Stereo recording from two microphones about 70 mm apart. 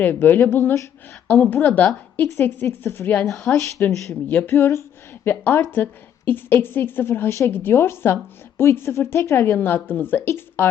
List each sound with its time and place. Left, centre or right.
0.0 s a woman's voice: left
3.5 s speech: left
3.8 s speech: left
4.5 s a woman's voice: left
5.2 s a woman's voice: left
9.6 s speech: left